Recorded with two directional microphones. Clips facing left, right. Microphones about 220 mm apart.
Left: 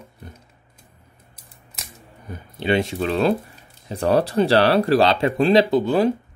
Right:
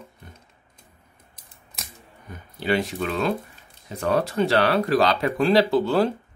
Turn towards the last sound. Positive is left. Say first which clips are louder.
# left 2 dB
turn(degrees=15)  # may be behind; listen again after turning